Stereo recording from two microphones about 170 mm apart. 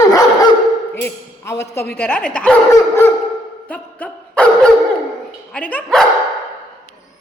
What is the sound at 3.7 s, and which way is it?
Dog, 10° left (ahead or behind).